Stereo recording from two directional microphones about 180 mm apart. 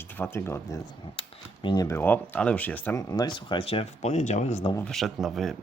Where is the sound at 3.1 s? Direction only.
25° left (ahead or behind); by 4.7 s 40° left (ahead or behind).